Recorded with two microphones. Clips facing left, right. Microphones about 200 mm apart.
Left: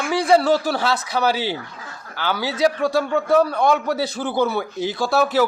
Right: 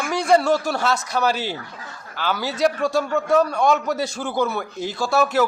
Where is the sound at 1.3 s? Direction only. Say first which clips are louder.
Left 2 dB; 65° left (ahead or behind).